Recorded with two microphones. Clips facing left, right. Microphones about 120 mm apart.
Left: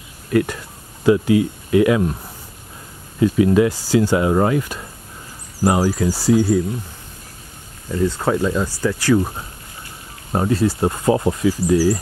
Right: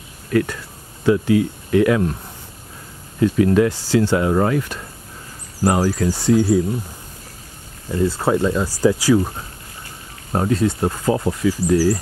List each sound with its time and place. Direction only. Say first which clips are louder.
0.3 s speech: left 1 dB; 20° left (ahead or behind)
3.2 s speech: left 1 dB; 10° left (ahead or behind)
8.0 s speech: right 1 dB; 10° right (ahead or behind)
10.3 s speech: even; centre (ahead or behind)
10.9 s speech: left 2 dB; 20° left (ahead or behind)
11.6 s speech: even; centre (ahead or behind)